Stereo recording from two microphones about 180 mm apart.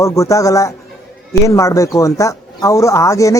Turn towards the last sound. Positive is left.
turn(degrees=15)  # may be behind; listen again after turning